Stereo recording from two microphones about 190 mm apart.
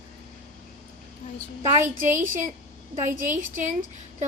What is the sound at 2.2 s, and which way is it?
Speech, 45° right (ahead or behind).